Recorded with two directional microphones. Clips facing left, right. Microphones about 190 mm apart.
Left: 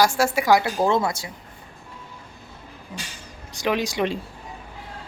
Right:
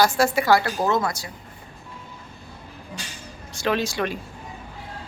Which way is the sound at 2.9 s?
20° left (ahead or behind).